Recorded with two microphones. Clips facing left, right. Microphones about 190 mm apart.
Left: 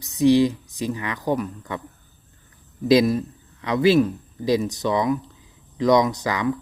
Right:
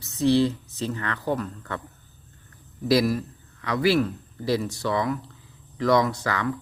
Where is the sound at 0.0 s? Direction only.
15° left (ahead or behind).